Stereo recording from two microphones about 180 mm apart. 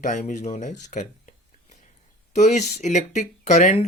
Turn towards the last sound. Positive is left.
turn(degrees=40)  # may be behind; listen again after turning